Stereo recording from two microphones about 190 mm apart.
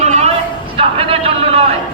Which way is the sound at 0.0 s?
35° right (ahead or behind).